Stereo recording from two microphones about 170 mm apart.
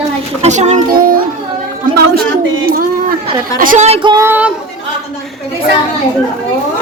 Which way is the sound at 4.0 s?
25° right (ahead or behind).